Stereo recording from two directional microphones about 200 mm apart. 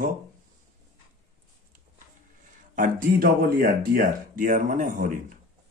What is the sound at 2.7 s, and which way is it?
Speech, 45° right (ahead or behind).